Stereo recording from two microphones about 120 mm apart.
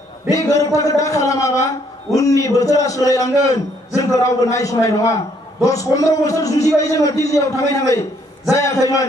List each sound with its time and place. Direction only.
0.3 s a man's voice: 25° left (ahead or behind)